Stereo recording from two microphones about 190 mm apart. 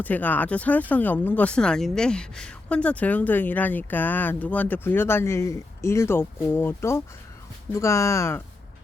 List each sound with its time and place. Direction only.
0.0 s speech: 10° left (ahead or behind)